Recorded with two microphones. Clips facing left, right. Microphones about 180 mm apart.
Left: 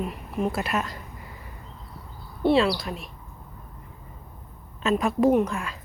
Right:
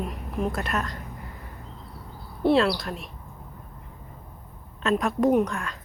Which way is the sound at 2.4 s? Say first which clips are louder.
Even; centre (ahead or behind).